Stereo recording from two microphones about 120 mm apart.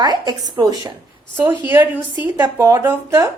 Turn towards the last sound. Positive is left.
turn(degrees=-20)  # may be behind; listen again after turning